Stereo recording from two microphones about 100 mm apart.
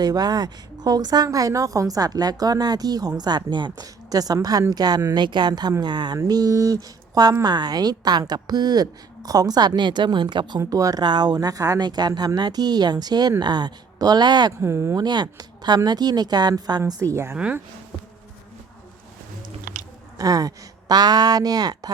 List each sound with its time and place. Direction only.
0.0 s a woman's voice: 40° right (ahead or behind)
10.6 s a woman's voice: 35° right (ahead or behind)
14.6 s speech: 25° right (ahead or behind)
14.9 s a woman's voice: 45° right (ahead or behind); by 17.3 s 30° right (ahead or behind)
17.3 s speech: 10° right (ahead or behind)
20.1 s a woman's voice: 40° right (ahead or behind)